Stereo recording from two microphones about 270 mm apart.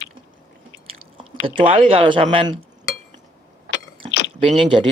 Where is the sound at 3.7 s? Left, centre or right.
Left.